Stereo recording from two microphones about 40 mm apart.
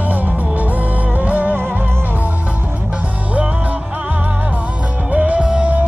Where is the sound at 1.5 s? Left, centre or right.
Right.